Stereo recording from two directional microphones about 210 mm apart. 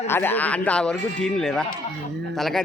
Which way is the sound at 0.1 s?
10° left (ahead or behind).